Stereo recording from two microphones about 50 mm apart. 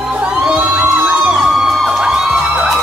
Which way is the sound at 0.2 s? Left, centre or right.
Right.